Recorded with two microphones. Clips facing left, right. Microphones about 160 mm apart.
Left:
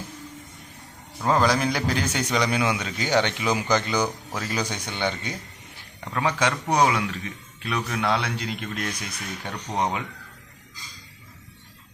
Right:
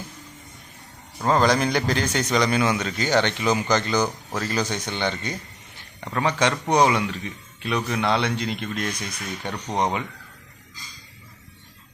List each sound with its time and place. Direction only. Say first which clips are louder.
1.2 s a man's voice: right 2 dB; 5° left (ahead or behind)